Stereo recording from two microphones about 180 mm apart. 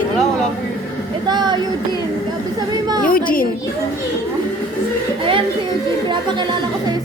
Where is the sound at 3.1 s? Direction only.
50° left (ahead or behind).